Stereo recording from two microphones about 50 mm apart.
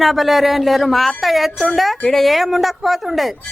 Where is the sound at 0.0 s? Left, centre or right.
Centre.